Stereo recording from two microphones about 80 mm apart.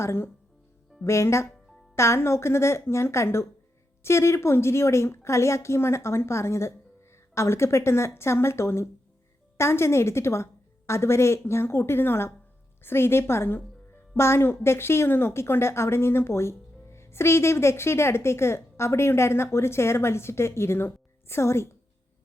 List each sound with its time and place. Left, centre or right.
0.0 s speech: left